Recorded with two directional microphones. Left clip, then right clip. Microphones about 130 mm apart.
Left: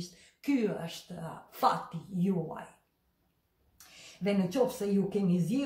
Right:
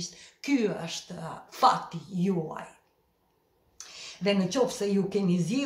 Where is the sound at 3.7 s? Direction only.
25° right (ahead or behind).